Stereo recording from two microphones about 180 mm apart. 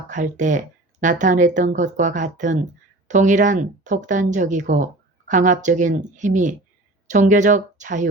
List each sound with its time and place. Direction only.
0.1 s speech: 45° right (ahead or behind)